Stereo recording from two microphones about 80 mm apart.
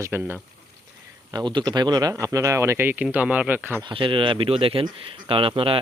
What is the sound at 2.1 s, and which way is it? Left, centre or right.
Speech, right.